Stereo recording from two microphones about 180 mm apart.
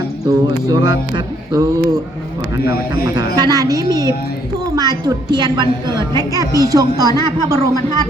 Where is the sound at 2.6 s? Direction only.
15° right (ahead or behind).